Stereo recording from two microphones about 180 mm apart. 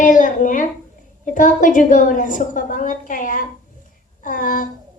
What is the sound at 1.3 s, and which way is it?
A woman's voice, 45° left (ahead or behind).